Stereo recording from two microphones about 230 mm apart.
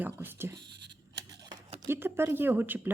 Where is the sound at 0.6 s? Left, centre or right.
Right.